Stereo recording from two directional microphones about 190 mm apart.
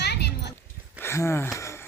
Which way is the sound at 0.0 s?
60° left (ahead or behind).